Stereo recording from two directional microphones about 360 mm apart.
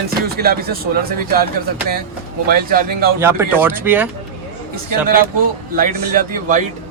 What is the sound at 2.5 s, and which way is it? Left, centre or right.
Speech, right.